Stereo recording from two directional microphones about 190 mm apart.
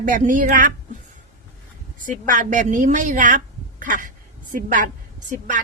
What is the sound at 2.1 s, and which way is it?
A woman's voice, 45° right (ahead or behind).